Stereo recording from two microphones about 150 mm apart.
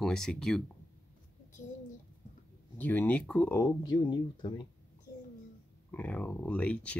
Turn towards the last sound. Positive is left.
turn(degrees=10)  # may be behind; listen again after turning